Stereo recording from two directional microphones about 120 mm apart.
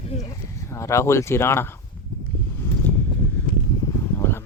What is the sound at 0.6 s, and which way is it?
Speech, 25° left (ahead or behind).